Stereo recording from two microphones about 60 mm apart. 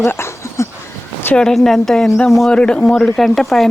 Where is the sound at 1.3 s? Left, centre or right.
Centre.